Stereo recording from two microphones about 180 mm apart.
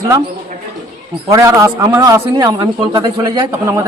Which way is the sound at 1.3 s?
20° right (ahead or behind).